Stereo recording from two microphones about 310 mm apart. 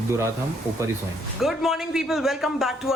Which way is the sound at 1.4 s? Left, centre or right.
Centre.